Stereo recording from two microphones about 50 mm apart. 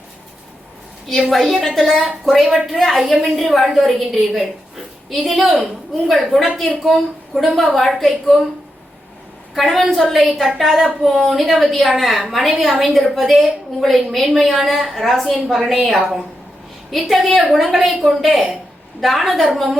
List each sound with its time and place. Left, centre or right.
1.3 s a woman's voice: centre
9.6 s a woman's voice: centre
15.5 s a woman's voice: centre
16.9 s a woman's voice: centre